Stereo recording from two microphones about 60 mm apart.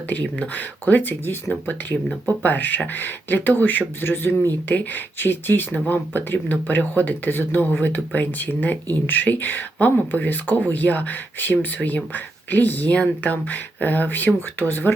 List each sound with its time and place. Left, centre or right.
0.1 s speech: left